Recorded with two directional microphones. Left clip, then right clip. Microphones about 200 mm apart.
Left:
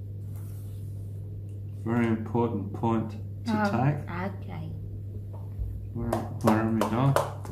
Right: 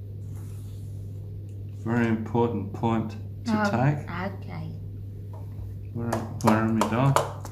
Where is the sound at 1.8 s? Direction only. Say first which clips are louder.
Right 2 dB; 20° right (ahead or behind).